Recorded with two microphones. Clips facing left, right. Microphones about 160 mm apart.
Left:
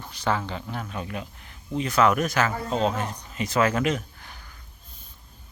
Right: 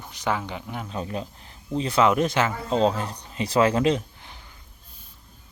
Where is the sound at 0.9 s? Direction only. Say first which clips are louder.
Right 3 dB; 30° right (ahead or behind).